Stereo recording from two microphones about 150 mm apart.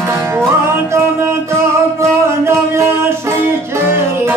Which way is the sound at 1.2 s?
20° right (ahead or behind).